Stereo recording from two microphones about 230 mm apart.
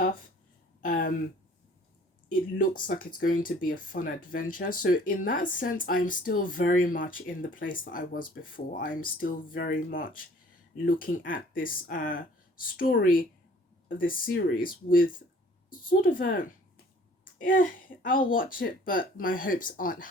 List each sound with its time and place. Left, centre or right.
0.8 s speech: left
2.3 s speech: left